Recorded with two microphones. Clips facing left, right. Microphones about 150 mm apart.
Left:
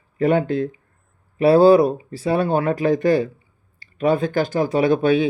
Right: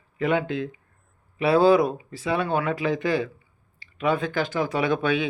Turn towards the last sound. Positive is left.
turn(degrees=35)  # may be behind; listen again after turning